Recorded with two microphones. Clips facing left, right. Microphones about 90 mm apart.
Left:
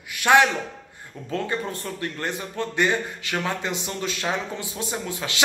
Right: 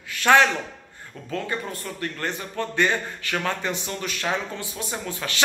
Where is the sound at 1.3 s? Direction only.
30° left (ahead or behind).